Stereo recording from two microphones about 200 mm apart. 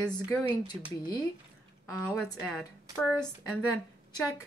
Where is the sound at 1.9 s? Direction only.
15° left (ahead or behind).